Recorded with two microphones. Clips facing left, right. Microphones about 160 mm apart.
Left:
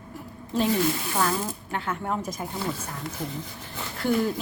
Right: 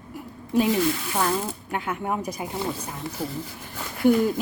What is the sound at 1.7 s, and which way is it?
Speech, 10° right (ahead or behind).